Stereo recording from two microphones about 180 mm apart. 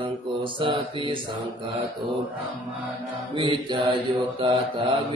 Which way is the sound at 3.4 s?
25° right (ahead or behind).